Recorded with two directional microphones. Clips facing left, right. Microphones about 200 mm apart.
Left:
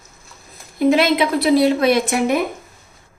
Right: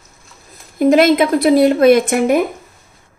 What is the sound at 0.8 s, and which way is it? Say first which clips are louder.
A woman's voice: right 4 dB; 45° right (ahead or behind).